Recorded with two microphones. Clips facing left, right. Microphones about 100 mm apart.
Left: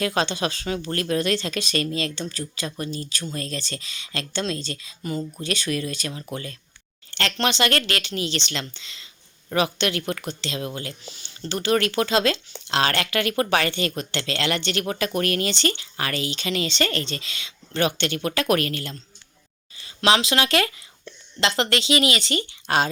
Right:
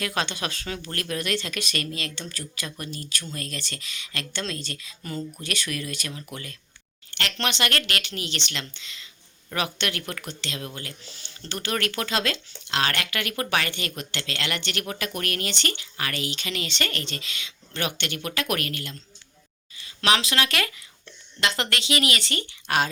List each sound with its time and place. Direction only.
0.0 s speech: 30° left (ahead or behind)
20.0 s speech: 25° left (ahead or behind)